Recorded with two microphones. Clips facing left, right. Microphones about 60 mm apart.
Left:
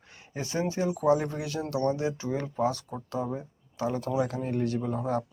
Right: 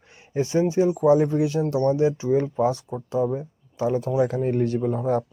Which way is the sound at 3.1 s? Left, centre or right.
Centre.